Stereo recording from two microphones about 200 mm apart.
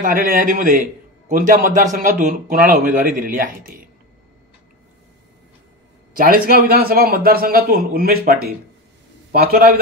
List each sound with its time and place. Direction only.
0.0 s a man's voice: 45° right (ahead or behind)
6.1 s a man's voice: 45° right (ahead or behind)